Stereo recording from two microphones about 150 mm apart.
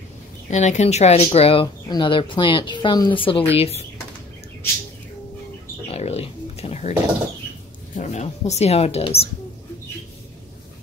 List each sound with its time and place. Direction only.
0.5 s speech: 50° left (ahead or behind)
5.9 s a sound: 45° left (ahead or behind)
7.9 s speech: 50° left (ahead or behind)